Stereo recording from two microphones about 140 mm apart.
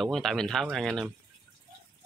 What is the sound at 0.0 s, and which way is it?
Speech, centre (ahead or behind).